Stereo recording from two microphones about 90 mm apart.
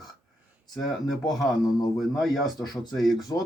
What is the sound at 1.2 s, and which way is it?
Speech, 45° left (ahead or behind).